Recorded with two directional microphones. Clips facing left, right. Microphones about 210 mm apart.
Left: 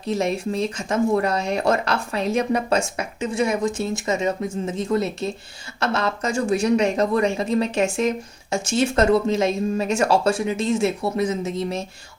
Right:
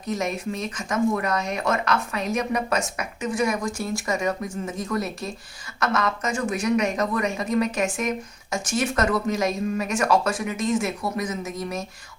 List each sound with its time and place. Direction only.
0.0 s speech: 30° left (ahead or behind)